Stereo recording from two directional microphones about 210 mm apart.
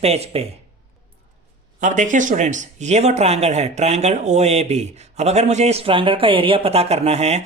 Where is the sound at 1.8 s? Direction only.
35° right (ahead or behind).